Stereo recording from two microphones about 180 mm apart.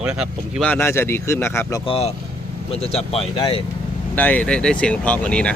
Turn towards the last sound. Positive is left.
turn(degrees=5)  # may be behind; listen again after turning